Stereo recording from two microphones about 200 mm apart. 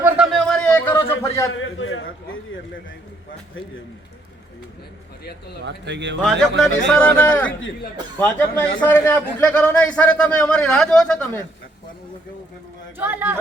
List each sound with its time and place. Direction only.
0.3 s a sound: 5° left (ahead or behind)
1.5 s a man's voice: 75° left (ahead or behind)
5.6 s speech: 60° right (ahead or behind)
6.2 s a man's voice: centre (ahead or behind)
13.0 s speech: 10° right (ahead or behind)